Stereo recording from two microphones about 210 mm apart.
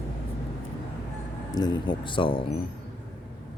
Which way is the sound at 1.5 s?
20° left (ahead or behind).